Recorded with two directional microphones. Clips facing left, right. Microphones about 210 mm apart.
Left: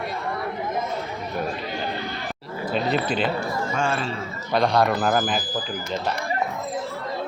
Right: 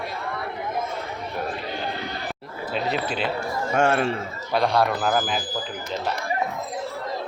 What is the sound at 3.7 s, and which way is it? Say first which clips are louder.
Speech: right 7 dB; 65° right (ahead or behind).